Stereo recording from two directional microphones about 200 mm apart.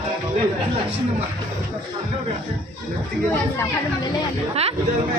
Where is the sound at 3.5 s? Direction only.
15° left (ahead or behind).